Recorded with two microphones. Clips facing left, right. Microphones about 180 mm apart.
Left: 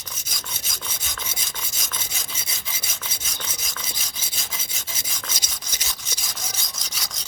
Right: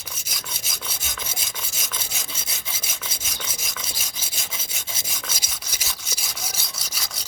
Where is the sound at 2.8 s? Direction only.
10° right (ahead or behind).